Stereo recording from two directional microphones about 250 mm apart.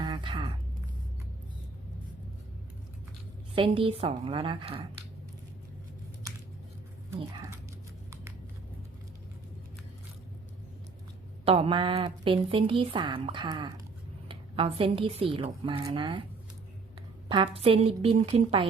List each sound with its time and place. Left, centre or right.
0.0 s a sound: centre
3.5 s a woman's voice: right
7.2 s speech: centre
11.4 s a woman's voice: right
17.2 s a woman's voice: right